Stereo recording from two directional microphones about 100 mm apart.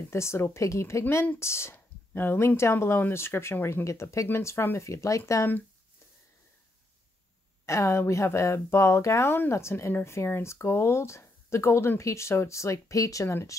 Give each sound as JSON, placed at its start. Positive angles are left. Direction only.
{"t": 0.1, "sound": "speech", "side_deg": 25}
{"t": 7.6, "sound": "speech", "side_deg": 30}